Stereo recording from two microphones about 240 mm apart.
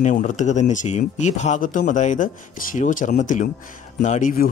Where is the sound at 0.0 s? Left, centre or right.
Left.